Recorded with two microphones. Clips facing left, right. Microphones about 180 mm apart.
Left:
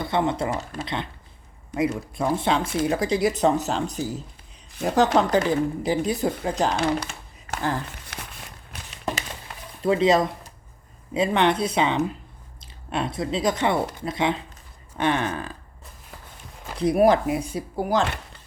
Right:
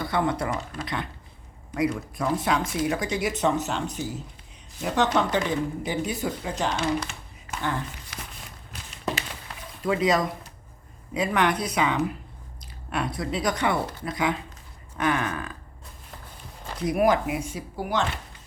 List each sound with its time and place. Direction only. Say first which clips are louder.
0.0 s speech: left 2 dB; 25° left (ahead or behind)
2.1 s speech: left 4 dB; 30° left (ahead or behind)
7.5 s a sound: left 4 dB; 50° left (ahead or behind)
9.8 s speech: left 4 dB; 30° left (ahead or behind)
16.7 s speech: left 4 dB; 30° left (ahead or behind)